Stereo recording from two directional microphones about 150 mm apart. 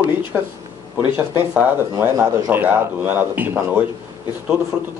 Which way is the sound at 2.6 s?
10° right (ahead or behind).